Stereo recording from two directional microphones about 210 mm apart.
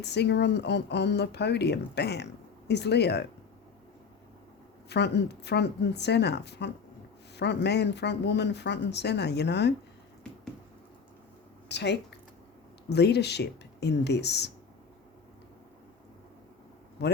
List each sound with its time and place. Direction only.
0.0 s speech: 55° left (ahead or behind)
4.9 s speech: 55° left (ahead or behind)
11.7 s speech: 55° left (ahead or behind)